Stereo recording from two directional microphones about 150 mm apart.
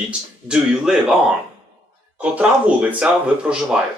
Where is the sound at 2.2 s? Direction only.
10° right (ahead or behind).